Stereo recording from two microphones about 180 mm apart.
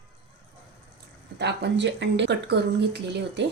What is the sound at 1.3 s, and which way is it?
Speech, 70° right (ahead or behind).